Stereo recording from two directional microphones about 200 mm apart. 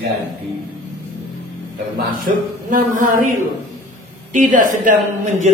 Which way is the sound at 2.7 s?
40° right (ahead or behind).